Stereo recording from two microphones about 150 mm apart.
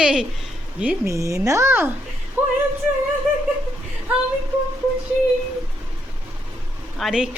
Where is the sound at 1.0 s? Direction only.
20° right (ahead or behind).